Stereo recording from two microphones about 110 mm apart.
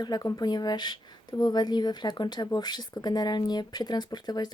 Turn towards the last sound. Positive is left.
turn(degrees=40)  # may be behind; listen again after turning